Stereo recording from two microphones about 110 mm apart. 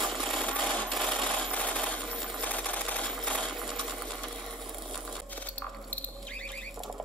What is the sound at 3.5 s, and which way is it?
Sewing machine, centre (ahead or behind).